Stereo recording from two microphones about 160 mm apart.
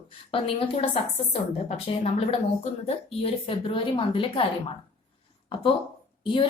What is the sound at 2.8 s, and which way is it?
A woman's voice, 35° left (ahead or behind).